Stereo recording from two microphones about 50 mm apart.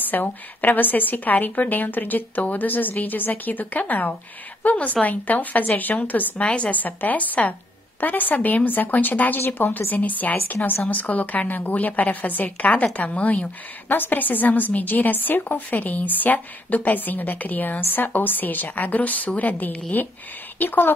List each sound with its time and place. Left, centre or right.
0.1 s a woman's voice: left